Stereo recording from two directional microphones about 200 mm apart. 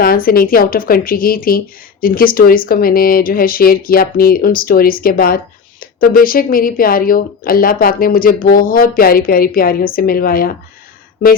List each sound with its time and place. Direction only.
0.0 s speech: 45° left (ahead or behind)